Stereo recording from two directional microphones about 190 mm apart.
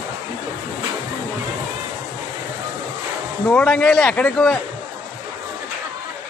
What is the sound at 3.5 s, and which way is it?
Speech, 5° left (ahead or behind).